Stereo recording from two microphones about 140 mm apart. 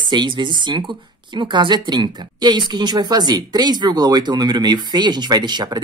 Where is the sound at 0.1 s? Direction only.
35° right (ahead or behind).